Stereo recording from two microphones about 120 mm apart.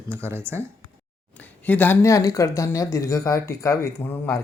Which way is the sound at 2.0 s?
25° left (ahead or behind).